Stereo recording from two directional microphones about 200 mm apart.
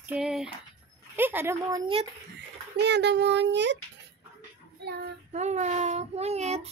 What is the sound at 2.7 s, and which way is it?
A child's voice, 60° right (ahead or behind).